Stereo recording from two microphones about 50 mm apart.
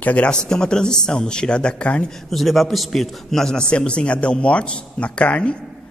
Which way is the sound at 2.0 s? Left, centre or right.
Centre.